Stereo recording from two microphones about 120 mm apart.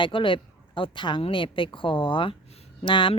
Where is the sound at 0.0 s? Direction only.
45° left (ahead or behind).